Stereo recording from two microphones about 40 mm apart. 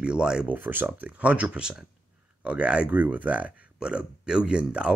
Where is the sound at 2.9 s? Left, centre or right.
Right.